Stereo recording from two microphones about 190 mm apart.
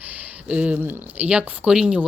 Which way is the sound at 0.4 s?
5° right (ahead or behind).